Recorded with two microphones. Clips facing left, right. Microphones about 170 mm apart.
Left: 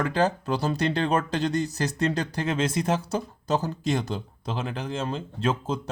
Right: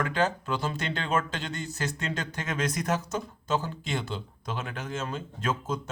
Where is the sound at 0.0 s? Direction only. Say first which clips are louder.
Left 3 dB; 35° left (ahead or behind).